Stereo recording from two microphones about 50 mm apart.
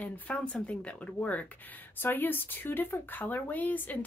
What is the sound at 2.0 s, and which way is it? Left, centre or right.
Speech, left.